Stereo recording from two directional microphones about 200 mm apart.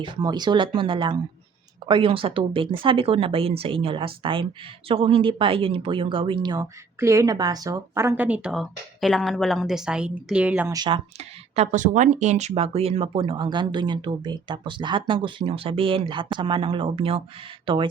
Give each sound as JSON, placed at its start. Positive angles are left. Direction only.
{"t": 0.0, "sound": "speech", "side_deg": -20}
{"t": 10.8, "sound": "speech", "side_deg": -25}